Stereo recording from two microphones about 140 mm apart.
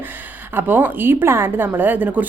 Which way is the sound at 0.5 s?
15° right (ahead or behind).